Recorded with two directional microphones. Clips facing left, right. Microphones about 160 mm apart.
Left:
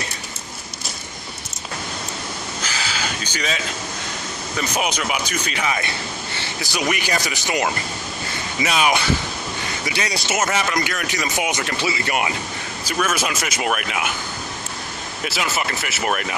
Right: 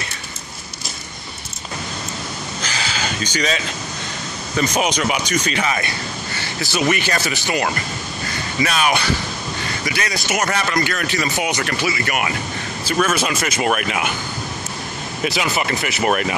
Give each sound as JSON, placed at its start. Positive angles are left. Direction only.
{"t": 2.6, "sound": "a sound", "side_deg": 10}
{"t": 4.6, "sound": "speech", "side_deg": 10}
{"t": 10.1, "sound": "speech", "side_deg": 25}
{"t": 10.5, "sound": "speech", "side_deg": 15}
{"t": 12.9, "sound": "speech", "side_deg": 10}
{"t": 15.2, "sound": "speech", "side_deg": 5}